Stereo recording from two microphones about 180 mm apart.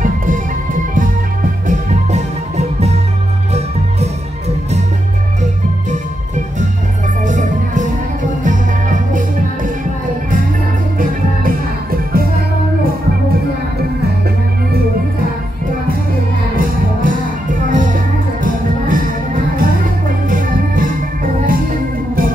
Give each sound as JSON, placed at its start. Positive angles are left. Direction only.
{"t": 1.7, "sound": "music", "side_deg": -40}
{"t": 7.2, "sound": "music", "side_deg": -45}
{"t": 11.0, "sound": "music", "side_deg": -55}
{"t": 16.5, "sound": "music", "side_deg": -50}
{"t": 20.2, "sound": "organ", "side_deg": -50}